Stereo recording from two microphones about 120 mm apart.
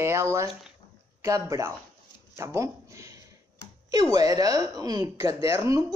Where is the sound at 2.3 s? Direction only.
25° right (ahead or behind).